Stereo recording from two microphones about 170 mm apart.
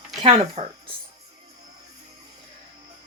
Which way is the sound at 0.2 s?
35° right (ahead or behind).